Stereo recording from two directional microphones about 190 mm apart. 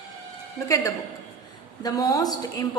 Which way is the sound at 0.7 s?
15° left (ahead or behind).